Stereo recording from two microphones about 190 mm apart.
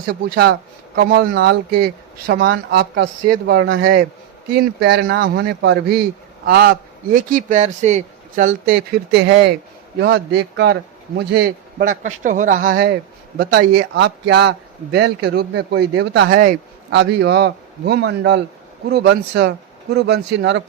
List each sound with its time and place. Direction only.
0.1 s a man's voice: 50° right (ahead or behind)
9.1 s a man's voice: 65° right (ahead or behind)